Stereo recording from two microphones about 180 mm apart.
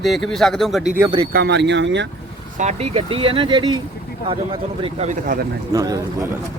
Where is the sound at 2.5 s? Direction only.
40° right (ahead or behind).